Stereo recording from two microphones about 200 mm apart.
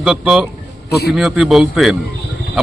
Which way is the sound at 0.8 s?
55° left (ahead or behind).